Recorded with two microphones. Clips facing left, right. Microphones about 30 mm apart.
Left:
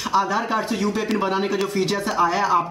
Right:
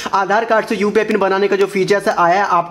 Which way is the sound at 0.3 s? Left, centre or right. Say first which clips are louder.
Right 8 dB; right.